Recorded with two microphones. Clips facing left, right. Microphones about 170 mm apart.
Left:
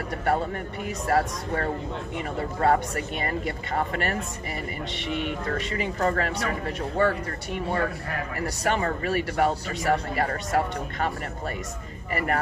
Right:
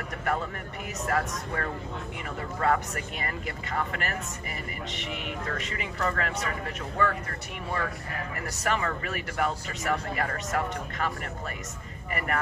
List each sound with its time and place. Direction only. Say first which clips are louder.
0.2 s speech: left 5 dB; 30° left (ahead or behind)
8.4 s speech: left 4 dB; 30° left (ahead or behind)
12.1 s speech: left 5 dB; 30° left (ahead or behind)